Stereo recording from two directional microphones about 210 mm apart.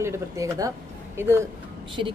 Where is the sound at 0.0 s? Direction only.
10° right (ahead or behind).